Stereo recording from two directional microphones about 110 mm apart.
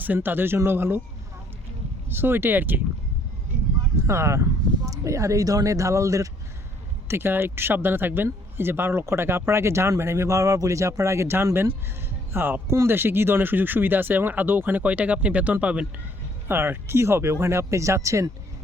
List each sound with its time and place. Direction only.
0.0 s speech: 15° right (ahead or behind)
2.0 s speech: 20° right (ahead or behind)
4.0 s speech: 25° right (ahead or behind)